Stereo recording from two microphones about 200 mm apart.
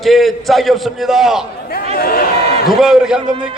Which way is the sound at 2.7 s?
Centre (ahead or behind).